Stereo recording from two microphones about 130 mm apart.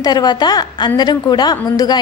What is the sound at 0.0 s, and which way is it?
A woman's voice, 30° left (ahead or behind).